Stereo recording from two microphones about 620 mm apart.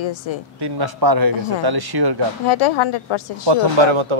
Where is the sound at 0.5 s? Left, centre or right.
Right.